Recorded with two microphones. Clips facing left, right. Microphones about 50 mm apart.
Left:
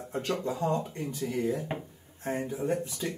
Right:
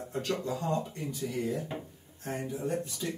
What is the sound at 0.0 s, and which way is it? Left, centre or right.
Speech, left.